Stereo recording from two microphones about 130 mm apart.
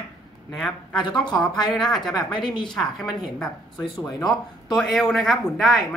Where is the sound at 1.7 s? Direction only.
Centre (ahead or behind).